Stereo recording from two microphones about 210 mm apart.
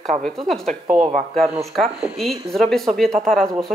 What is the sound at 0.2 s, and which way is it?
Speech, centre (ahead or behind).